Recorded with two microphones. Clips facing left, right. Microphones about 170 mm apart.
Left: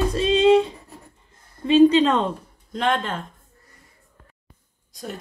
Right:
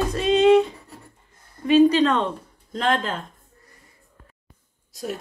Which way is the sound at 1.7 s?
25° left (ahead or behind).